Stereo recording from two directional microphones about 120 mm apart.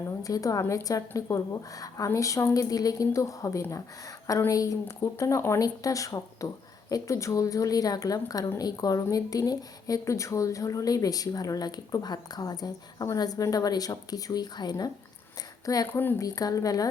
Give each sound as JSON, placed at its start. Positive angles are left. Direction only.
{"t": 0.0, "sound": "a woman's voice", "side_deg": 30}
{"t": 15.9, "sound": "speech", "side_deg": 20}
{"t": 16.2, "sound": "a woman's voice", "side_deg": 30}